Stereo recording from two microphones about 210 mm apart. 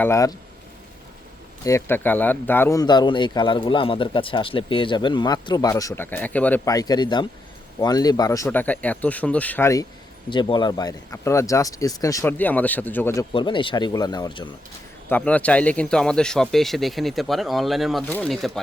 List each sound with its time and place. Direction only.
0.0 s speech: 15° left (ahead or behind)
1.6 s speech: 10° left (ahead or behind)
10.2 s speech: 20° left (ahead or behind)
13.3 s speech: 25° left (ahead or behind)
15.1 s speech: 5° left (ahead or behind)